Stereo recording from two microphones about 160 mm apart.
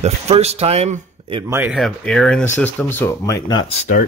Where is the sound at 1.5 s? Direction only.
10° right (ahead or behind).